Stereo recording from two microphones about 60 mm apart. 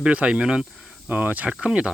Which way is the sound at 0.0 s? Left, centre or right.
Centre.